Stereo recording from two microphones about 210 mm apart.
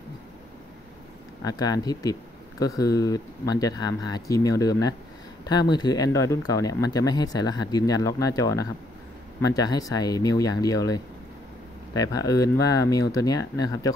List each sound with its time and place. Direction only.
1.4 s speech: 20° left (ahead or behind)